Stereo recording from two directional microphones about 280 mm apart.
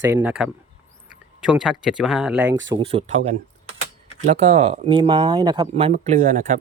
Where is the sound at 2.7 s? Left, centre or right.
Centre.